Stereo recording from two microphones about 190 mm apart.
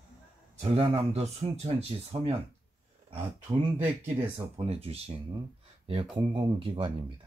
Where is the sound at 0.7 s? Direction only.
30° right (ahead or behind).